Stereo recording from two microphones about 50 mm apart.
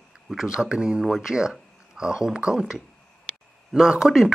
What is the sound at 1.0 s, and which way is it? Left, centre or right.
Speech, centre.